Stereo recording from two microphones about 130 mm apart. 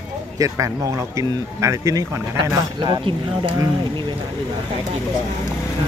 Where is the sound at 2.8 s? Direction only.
40° right (ahead or behind).